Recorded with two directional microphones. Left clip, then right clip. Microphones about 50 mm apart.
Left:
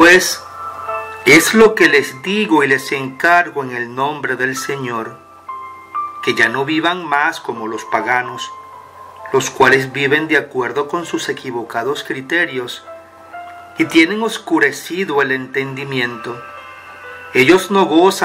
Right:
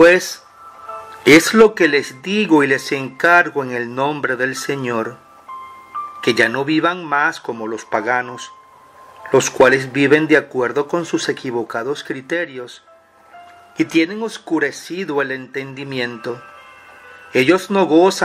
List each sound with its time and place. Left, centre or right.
0.8 s music: left
1.2 s speech: right
6.2 s speech: right
9.6 s speech: right
13.7 s speech: right
17.3 s speech: right